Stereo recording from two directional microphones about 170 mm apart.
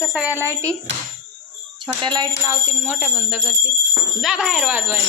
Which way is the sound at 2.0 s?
25° right (ahead or behind).